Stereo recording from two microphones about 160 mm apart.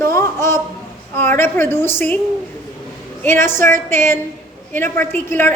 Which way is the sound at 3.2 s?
15° left (ahead or behind).